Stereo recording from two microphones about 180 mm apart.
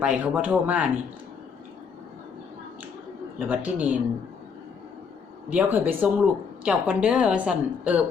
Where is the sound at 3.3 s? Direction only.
10° right (ahead or behind).